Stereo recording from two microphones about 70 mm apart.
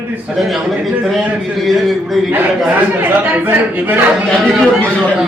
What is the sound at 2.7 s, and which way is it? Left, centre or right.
A man's voice, right.